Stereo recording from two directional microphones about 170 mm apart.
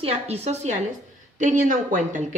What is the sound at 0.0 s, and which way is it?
A woman's voice, 35° right (ahead or behind).